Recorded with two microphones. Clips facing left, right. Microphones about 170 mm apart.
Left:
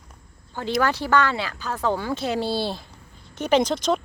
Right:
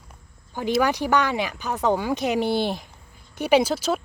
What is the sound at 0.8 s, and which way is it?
Speech, 15° right (ahead or behind).